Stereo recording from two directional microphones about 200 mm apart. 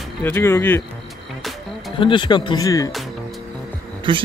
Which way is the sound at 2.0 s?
25° left (ahead or behind).